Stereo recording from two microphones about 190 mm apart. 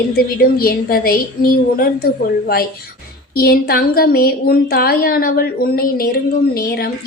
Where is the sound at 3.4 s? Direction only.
50° left (ahead or behind).